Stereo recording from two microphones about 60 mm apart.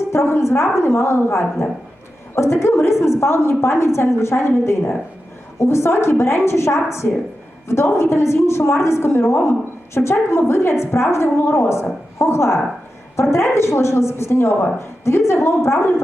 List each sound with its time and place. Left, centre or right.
0.1 s a woman's voice: left